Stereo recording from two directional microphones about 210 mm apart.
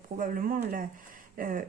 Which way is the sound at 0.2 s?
40° right (ahead or behind).